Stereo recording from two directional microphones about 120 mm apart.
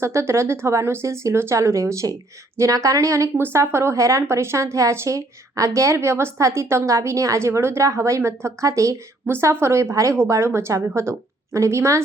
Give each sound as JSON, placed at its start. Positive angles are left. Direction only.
{"t": 0.0, "sound": "a woman's voice", "side_deg": -25}